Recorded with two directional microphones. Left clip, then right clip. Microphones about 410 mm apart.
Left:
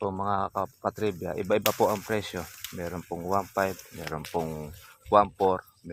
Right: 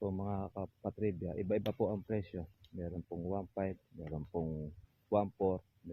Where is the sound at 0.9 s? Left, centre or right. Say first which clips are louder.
Left 8 dB; left.